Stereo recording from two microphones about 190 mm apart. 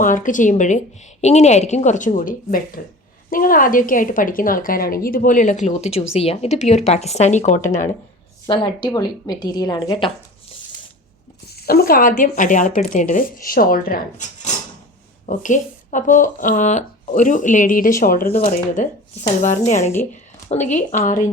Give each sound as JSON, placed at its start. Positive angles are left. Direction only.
{"t": 0.0, "sound": "a woman's voice", "side_deg": 45}
{"t": 8.4, "sound": "a woman's voice", "side_deg": 25}
{"t": 11.5, "sound": "speech", "side_deg": 55}
{"t": 18.3, "sound": "a woman's voice", "side_deg": 40}